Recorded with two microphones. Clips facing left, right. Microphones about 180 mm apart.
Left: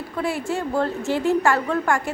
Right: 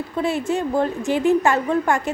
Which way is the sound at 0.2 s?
20° right (ahead or behind).